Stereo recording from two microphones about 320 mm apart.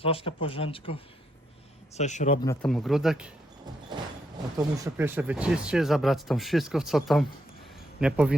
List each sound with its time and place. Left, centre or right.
0.0 s speech: centre
2.0 s speech: left
2.6 s speech: centre
4.5 s speech: centre